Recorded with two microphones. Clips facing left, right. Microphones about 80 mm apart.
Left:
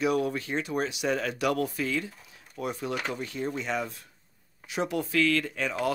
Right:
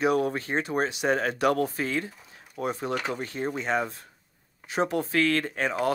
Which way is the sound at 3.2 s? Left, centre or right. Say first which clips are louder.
Right 2 dB; right.